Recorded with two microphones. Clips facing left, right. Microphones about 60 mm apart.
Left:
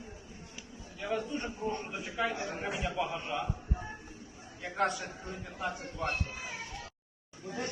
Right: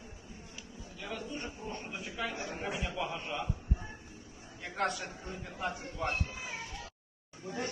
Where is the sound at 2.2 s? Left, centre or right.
Centre.